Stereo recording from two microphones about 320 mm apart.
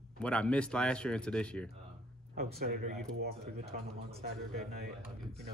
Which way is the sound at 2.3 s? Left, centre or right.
Right.